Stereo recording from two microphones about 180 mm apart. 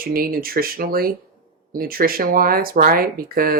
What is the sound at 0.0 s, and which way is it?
Speech, 55° right (ahead or behind).